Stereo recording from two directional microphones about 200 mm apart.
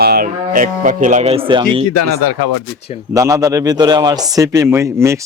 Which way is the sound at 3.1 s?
15° right (ahead or behind).